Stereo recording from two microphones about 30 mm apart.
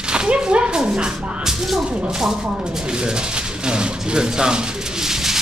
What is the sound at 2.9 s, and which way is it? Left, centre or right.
Speech, right.